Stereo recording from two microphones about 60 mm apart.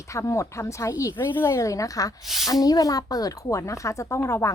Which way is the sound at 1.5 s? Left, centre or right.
Left.